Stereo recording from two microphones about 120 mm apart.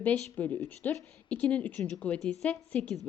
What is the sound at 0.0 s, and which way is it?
A woman's voice, 15° left (ahead or behind).